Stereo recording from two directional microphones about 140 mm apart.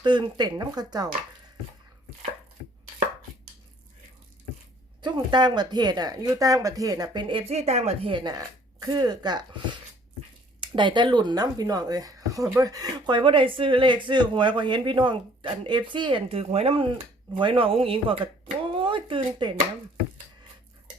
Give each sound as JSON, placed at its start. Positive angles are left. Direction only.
{"t": 0.0, "sound": "speech", "side_deg": -35}
{"t": 5.0, "sound": "speech", "side_deg": -30}
{"t": 10.6, "sound": "speech", "side_deg": -35}